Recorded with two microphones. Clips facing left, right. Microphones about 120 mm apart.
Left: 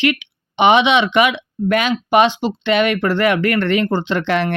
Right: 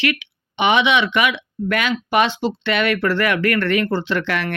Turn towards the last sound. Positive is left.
turn(degrees=25)  # may be behind; listen again after turning